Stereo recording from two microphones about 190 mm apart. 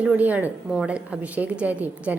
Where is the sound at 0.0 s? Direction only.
10° right (ahead or behind).